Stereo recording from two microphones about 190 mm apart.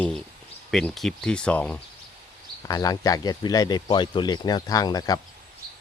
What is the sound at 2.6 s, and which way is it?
Speech, 20° left (ahead or behind).